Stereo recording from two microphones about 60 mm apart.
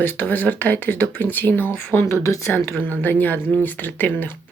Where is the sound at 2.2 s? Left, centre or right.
Left.